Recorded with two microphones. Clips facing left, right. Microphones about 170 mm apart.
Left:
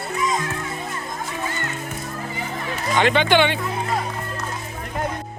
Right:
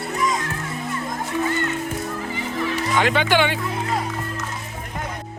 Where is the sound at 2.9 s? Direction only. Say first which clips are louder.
Left 2 dB; 5° right (ahead or behind).